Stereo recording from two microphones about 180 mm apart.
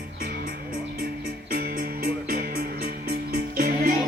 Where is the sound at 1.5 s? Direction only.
50° right (ahead or behind).